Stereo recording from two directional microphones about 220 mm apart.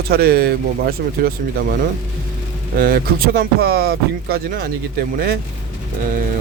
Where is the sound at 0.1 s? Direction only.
45° right (ahead or behind).